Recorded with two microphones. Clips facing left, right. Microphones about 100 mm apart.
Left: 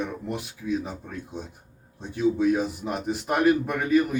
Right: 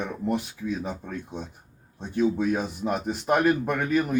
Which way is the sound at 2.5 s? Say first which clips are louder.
Left 1 dB; 45° right (ahead or behind).